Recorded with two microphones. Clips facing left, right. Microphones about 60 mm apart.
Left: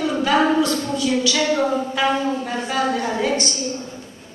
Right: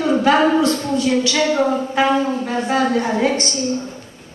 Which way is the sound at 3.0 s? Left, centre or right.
Right.